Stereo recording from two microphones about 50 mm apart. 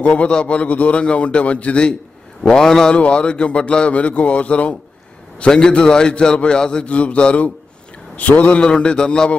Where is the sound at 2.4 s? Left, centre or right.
Centre; by 8.5 s left.